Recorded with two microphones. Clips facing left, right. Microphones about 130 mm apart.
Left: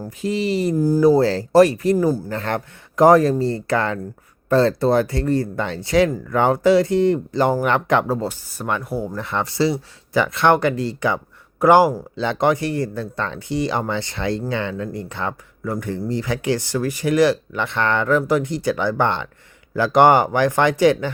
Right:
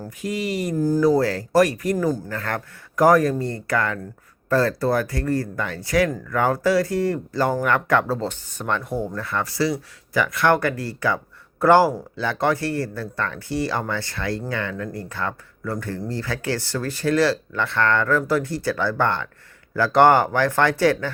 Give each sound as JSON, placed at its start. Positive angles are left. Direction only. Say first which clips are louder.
{"t": 0.2, "sound": "speech", "louder": "left 5 dB", "side_deg": 30}
{"t": 0.8, "sound": "speech", "louder": "even", "side_deg": 10}
{"t": 1.0, "sound": "speech", "louder": "left 6 dB", "side_deg": 25}
{"t": 2.0, "sound": "speech", "louder": "left 4 dB", "side_deg": 10}
{"t": 2.3, "sound": "speech", "louder": "left 4 dB", "side_deg": 25}
{"t": 9.1, "sound": "speech", "louder": "left 2 dB", "side_deg": 20}